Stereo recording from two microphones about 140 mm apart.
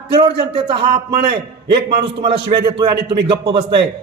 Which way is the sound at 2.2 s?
35° right (ahead or behind).